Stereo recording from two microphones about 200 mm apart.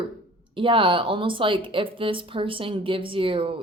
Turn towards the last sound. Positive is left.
turn(degrees=-25)  # may be behind; listen again after turning